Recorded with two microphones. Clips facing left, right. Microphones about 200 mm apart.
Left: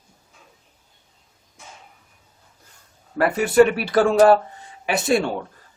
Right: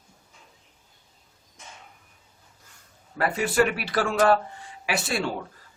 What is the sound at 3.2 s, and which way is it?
Speech, 50° left (ahead or behind).